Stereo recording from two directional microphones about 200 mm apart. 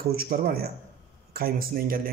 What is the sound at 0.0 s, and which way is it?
Speech, 50° right (ahead or behind).